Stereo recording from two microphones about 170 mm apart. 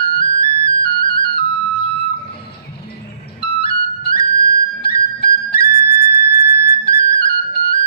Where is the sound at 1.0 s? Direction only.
65° left (ahead or behind).